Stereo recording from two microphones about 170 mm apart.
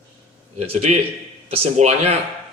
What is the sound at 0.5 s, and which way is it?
A man's voice, 35° right (ahead or behind).